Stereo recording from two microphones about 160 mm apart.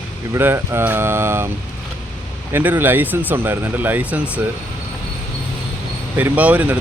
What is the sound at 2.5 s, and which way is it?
Speech, 10° right (ahead or behind).